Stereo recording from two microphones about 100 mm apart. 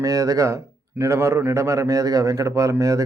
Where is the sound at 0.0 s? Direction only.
35° right (ahead or behind).